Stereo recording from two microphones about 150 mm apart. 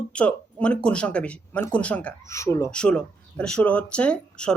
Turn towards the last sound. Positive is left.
turn(degrees=5)  # may be behind; listen again after turning